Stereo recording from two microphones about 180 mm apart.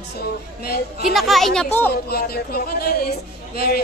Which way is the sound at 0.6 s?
60° left (ahead or behind).